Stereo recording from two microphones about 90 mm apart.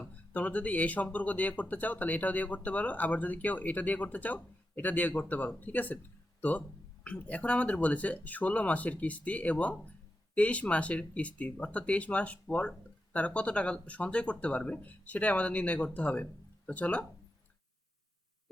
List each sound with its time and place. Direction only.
0.0 s speech: 15° left (ahead or behind)
7.0 s speech: 15° left (ahead or behind)